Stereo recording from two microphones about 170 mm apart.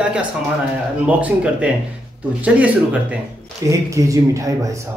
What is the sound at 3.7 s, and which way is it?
Speech, 20° right (ahead or behind).